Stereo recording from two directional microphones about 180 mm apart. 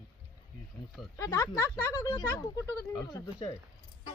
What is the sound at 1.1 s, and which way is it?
Speech, 15° left (ahead or behind).